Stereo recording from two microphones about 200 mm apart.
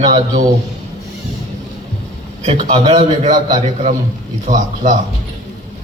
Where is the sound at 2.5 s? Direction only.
40° right (ahead or behind).